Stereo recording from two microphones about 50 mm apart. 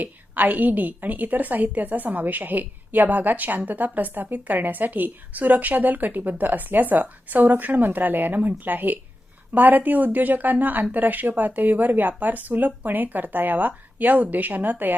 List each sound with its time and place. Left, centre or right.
0.0 s a woman's voice: right